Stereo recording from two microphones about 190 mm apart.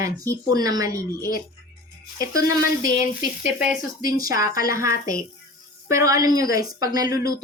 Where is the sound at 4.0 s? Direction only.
20° right (ahead or behind).